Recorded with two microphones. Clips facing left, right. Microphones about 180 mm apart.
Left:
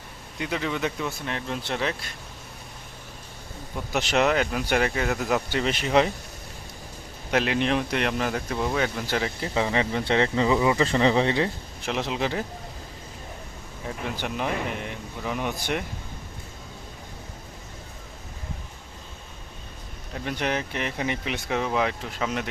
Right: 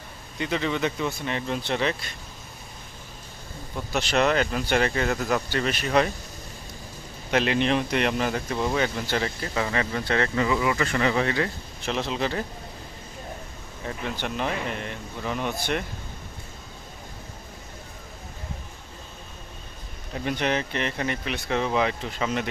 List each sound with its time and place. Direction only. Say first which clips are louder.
0.3 s speech: right 2 dB; 5° left (ahead or behind)
3.8 s speech: even; 15° left (ahead or behind)
7.3 s speech: right 1 dB; 5° left (ahead or behind)
9.4 s speech: left 2 dB; 20° left (ahead or behind)
11.9 s speech: even; 15° left (ahead or behind)
13.8 s speech: even; 10° left (ahead or behind)
20.1 s speech: right 2 dB; centre (ahead or behind); by 21.6 s 15° left (ahead or behind)
21.6 s speech: right 2 dB; centre (ahead or behind)